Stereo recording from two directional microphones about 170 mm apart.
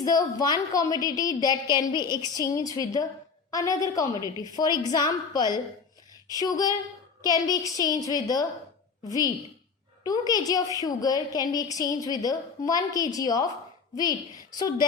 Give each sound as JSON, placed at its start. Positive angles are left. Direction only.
{"t": 0.0, "sound": "a woman's voice", "side_deg": 20}